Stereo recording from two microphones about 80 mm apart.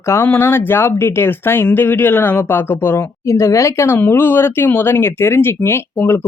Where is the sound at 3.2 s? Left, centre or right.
Left.